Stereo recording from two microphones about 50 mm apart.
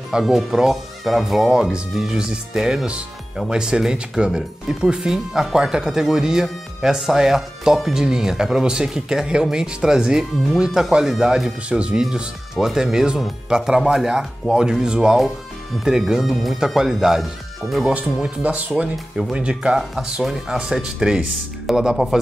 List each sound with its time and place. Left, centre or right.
0.1 s speech: centre
17.8 s speech: right
18.7 s speech: centre